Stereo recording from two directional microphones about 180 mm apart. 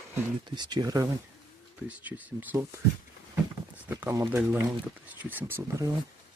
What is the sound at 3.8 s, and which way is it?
Speech, 10° right (ahead or behind).